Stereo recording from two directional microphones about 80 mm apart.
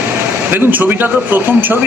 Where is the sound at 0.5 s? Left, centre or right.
Right.